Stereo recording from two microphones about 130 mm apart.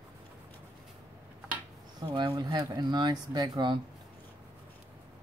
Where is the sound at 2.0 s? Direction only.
35° right (ahead or behind).